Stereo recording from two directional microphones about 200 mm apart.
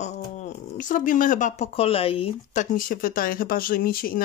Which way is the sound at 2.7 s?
45° left (ahead or behind).